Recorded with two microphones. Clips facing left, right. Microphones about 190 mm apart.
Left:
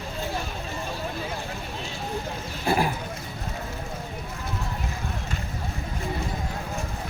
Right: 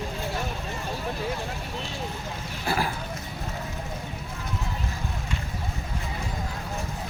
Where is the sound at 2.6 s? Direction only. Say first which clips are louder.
Left 4 dB; 20° left (ahead or behind).